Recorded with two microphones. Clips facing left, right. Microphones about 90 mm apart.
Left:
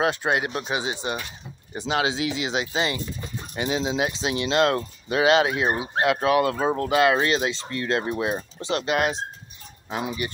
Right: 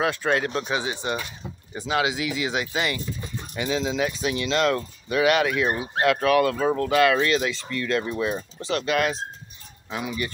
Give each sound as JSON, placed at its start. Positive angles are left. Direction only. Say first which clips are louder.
{"t": 0.0, "sound": "speech", "louder": "even", "side_deg": 20}